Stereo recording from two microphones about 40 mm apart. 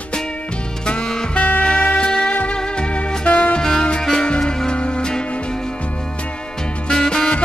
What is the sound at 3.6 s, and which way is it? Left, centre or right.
Music, centre.